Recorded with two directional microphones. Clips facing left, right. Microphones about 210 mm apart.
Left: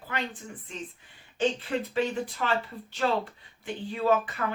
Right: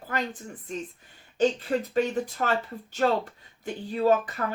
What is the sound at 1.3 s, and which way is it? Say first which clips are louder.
Speech: right 3 dB; 40° right (ahead or behind).